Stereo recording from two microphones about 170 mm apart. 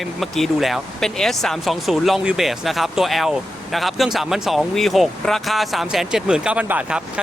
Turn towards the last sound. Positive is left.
turn(degrees=-10)  # may be behind; listen again after turning